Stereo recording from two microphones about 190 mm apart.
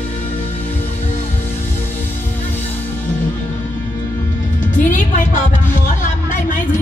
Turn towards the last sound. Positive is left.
turn(degrees=45)  # may be behind; listen again after turning